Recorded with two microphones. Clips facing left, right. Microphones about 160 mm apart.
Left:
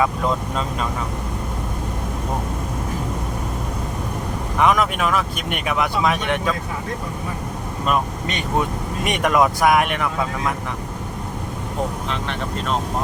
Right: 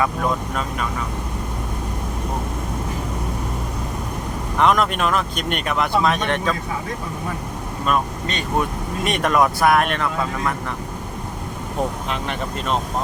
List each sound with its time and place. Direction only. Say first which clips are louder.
4.5 s speech: even; 10° left (ahead or behind)
7.9 s speech: even; 15° left (ahead or behind)